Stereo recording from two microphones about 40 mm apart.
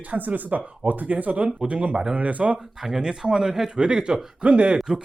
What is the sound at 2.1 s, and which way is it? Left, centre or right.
Speech, right.